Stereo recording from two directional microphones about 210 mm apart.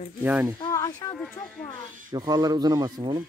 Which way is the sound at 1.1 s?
5° left (ahead or behind).